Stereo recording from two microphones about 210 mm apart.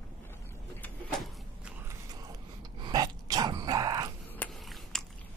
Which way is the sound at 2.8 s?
20° right (ahead or behind).